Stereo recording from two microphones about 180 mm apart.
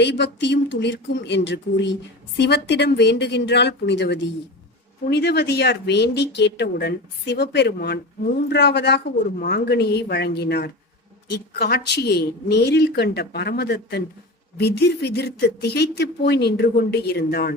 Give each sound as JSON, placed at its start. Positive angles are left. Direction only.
{"t": 0.0, "sound": "a woman's voice", "side_deg": 75}
{"t": 5.0, "sound": "a woman's voice", "side_deg": 65}